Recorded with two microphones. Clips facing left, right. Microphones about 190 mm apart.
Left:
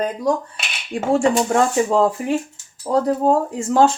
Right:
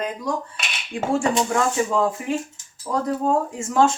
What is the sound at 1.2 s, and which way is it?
Speech, 35° left (ahead or behind).